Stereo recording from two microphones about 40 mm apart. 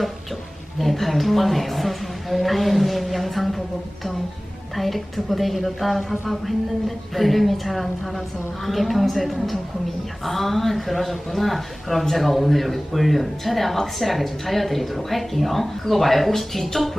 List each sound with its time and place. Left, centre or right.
0.8 s a man's voice: centre
4.7 s a man's voice: centre